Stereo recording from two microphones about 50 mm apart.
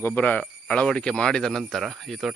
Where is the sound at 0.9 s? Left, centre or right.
Centre.